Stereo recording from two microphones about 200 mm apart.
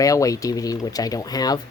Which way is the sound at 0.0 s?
15° left (ahead or behind).